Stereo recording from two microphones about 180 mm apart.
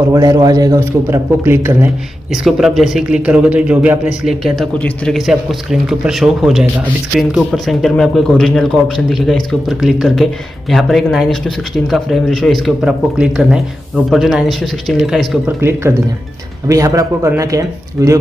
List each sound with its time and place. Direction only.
0.1 s a man's voice: 20° right (ahead or behind)
2.3 s speech: centre (ahead or behind); by 18.2 s 20° right (ahead or behind)